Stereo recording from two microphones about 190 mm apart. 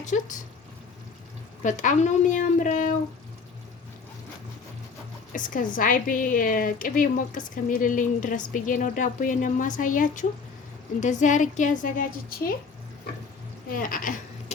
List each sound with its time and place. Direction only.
0.1 s a woman's voice: 45° left (ahead or behind)
1.6 s a woman's voice: 40° left (ahead or behind)
5.3 s a woman's voice: 45° left (ahead or behind)
13.7 s speech: 45° left (ahead or behind)